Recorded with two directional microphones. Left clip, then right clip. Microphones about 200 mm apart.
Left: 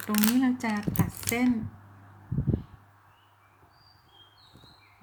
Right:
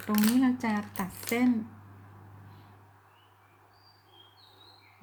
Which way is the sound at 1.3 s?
35° left (ahead or behind).